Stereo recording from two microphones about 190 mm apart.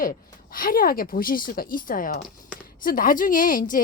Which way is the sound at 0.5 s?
50° left (ahead or behind).